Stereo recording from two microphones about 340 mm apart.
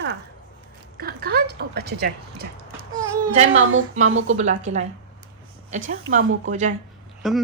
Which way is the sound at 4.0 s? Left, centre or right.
Right.